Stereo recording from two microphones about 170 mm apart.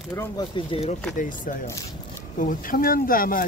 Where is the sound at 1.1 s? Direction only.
50° left (ahead or behind).